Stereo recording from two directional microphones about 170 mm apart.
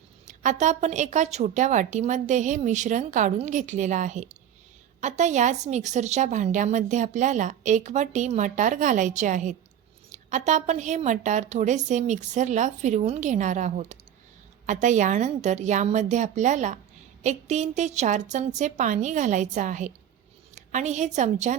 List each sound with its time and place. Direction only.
0.3 s a woman's voice: 45° right (ahead or behind)